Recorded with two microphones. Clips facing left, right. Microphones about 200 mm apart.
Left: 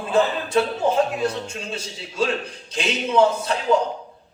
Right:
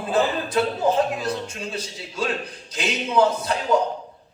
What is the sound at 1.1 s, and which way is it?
Speech, 25° left (ahead or behind).